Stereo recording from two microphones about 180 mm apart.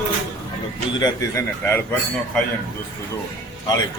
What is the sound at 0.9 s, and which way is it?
Speech, 20° left (ahead or behind).